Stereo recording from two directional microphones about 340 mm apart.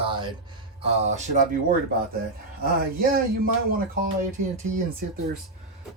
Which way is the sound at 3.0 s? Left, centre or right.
Right.